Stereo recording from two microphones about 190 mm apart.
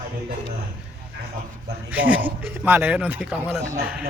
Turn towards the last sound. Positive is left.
turn(degrees=-5)  # may be behind; listen again after turning